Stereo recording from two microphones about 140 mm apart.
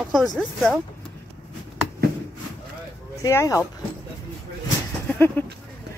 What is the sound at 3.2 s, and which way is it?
Speech, 20° left (ahead or behind).